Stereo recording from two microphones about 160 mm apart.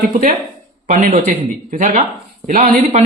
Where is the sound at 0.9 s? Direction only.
55° right (ahead or behind).